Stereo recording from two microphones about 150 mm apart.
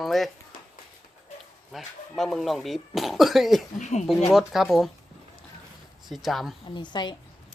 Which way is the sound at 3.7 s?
50° left (ahead or behind).